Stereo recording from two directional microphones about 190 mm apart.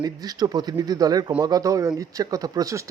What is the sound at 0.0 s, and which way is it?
Speech, 20° right (ahead or behind).